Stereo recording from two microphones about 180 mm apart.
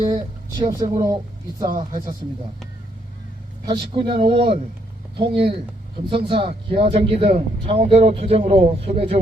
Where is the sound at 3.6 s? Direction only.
25° right (ahead or behind).